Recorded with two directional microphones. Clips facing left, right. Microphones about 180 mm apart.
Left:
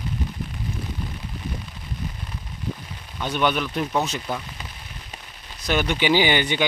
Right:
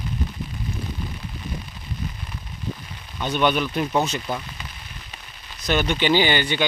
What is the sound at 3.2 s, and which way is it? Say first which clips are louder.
Speech: right 2 dB; 5° left (ahead or behind).